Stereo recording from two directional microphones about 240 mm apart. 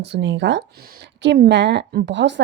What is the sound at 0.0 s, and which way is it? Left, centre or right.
A woman's voice, right.